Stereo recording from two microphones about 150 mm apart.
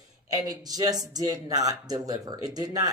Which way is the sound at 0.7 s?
25° right (ahead or behind).